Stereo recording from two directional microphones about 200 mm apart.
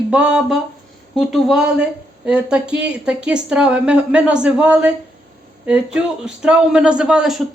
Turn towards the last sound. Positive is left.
turn(degrees=-5)  # may be behind; listen again after turning